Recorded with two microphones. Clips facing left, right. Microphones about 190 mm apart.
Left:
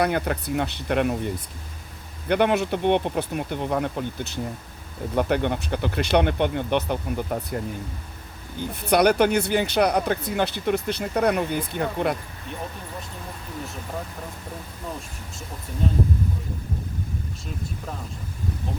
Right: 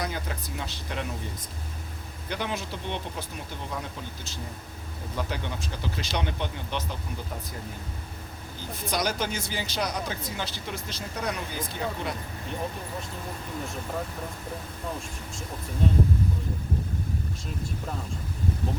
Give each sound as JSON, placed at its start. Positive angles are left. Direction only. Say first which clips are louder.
{"t": 0.0, "sound": "speech", "louder": "left 10 dB", "side_deg": 65}
{"t": 2.3, "sound": "speech", "louder": "left 12 dB", "side_deg": 65}
{"t": 8.7, "sound": "speech", "louder": "left 10 dB", "side_deg": 65}